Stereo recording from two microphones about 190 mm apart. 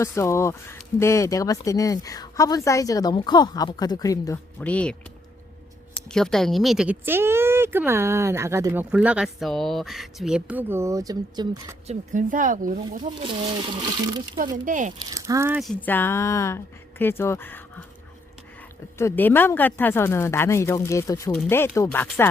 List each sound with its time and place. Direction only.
0.0 s speech: 15° left (ahead or behind)
4.6 s speech: 5° left (ahead or behind)
6.1 s speech: 5° left (ahead or behind); by 11.7 s 20° right (ahead or behind)
11.9 s speech: 45° right (ahead or behind)
13.1 s speech: 25° right (ahead or behind)
14.5 s speech: 45° right (ahead or behind)
14.9 s speech: 20° right (ahead or behind)
15.6 s speech: 10° left (ahead or behind)
18.9 s speech: 10° left (ahead or behind)